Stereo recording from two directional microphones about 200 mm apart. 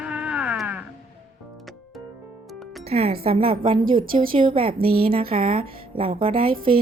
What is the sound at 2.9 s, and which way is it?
A woman's voice, 30° right (ahead or behind).